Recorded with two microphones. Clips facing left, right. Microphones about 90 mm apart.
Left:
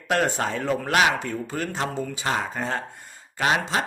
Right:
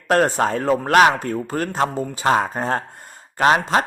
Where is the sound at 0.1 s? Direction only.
40° right (ahead or behind).